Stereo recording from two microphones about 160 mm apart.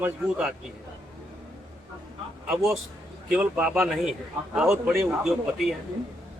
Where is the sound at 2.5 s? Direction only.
Centre (ahead or behind).